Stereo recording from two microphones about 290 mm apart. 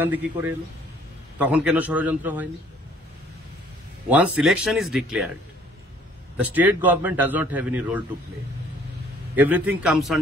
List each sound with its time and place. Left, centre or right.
0.0 s a man's voice: centre
4.1 s a man's voice: centre
6.3 s a man's voice: centre
9.3 s a man's voice: centre